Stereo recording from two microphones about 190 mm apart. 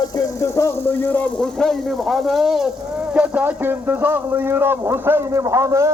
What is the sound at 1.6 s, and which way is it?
A man's voice, centre (ahead or behind).